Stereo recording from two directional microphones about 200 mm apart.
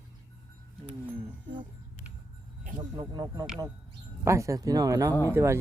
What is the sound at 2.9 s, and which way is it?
Speech, 20° right (ahead or behind).